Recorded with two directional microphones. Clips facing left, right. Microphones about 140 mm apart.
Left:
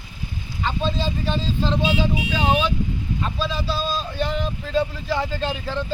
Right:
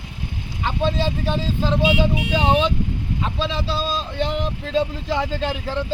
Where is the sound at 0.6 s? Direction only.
15° right (ahead or behind).